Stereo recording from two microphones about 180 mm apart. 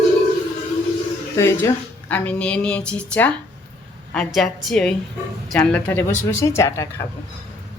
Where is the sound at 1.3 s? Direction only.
15° left (ahead or behind).